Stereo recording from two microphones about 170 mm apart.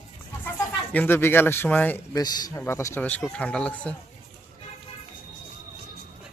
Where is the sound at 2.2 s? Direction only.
20° left (ahead or behind); by 3.9 s 5° left (ahead or behind).